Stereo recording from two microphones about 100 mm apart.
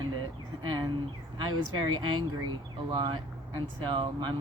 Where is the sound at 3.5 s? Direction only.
50° right (ahead or behind).